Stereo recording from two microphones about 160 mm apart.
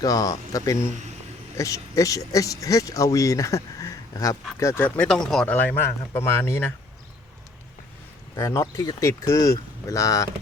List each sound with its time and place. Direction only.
0.0 s speech: 20° left (ahead or behind)
4.9 s speech: 5° left (ahead or behind)
8.4 s speech: 20° left (ahead or behind)